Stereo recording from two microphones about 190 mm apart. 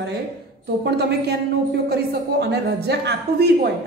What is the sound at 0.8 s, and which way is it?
A woman's voice, 60° right (ahead or behind).